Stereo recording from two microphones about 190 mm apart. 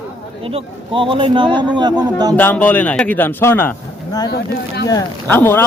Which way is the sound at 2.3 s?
10° left (ahead or behind).